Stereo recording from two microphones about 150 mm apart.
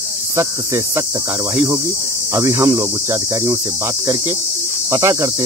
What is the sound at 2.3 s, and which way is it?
Speech, 20° right (ahead or behind).